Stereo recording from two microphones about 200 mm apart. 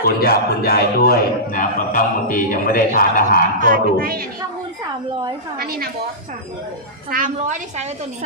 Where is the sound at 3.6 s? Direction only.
45° right (ahead or behind).